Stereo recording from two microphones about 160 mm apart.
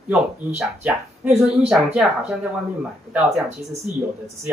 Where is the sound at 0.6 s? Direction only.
5° right (ahead or behind).